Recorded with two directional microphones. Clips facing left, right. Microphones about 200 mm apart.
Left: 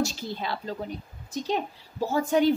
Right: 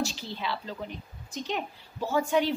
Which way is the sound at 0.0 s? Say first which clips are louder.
Left 3 dB; 45° left (ahead or behind).